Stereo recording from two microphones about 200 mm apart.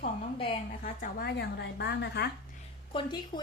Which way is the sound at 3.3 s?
25° left (ahead or behind).